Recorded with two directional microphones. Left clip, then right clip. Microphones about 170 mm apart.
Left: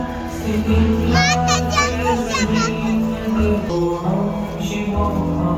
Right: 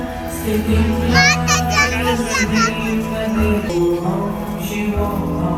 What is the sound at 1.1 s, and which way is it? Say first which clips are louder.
Speech: right 4 dB; 15° left (ahead or behind).